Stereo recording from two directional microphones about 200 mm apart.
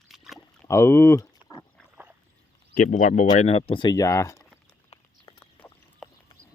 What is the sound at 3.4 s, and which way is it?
Speech, 30° left (ahead or behind).